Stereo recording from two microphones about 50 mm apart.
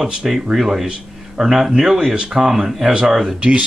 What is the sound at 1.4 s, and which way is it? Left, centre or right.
Speech, centre.